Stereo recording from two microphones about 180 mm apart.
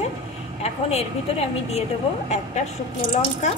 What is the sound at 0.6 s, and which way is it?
Speech, 35° left (ahead or behind).